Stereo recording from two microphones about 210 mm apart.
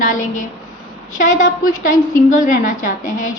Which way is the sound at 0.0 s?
35° left (ahead or behind).